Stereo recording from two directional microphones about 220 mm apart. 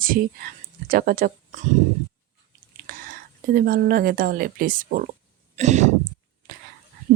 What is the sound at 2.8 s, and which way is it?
A woman's voice, 40° right (ahead or behind).